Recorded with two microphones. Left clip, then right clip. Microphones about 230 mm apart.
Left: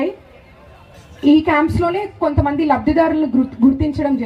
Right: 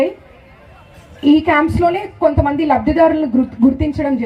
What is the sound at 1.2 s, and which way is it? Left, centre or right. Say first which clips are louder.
A woman's voice: right 1 dB; right.